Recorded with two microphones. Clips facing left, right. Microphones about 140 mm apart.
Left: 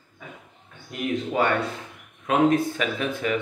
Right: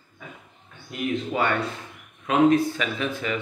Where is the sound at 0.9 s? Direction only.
40° left (ahead or behind).